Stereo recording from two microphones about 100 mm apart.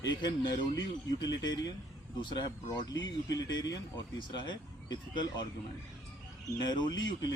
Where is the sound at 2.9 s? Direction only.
40° left (ahead or behind).